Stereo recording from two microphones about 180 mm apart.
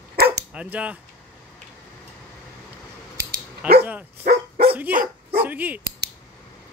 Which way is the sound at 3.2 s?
60° right (ahead or behind).